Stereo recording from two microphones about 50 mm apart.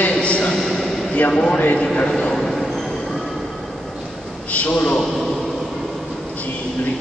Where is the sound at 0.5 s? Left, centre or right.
Centre.